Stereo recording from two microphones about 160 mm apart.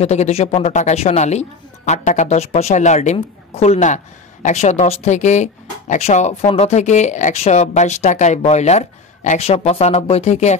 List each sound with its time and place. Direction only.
0.0 s a woman's voice: 40° left (ahead or behind)